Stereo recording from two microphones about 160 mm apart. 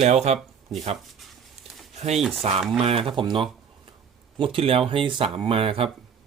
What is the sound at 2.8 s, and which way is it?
Speech, 35° right (ahead or behind).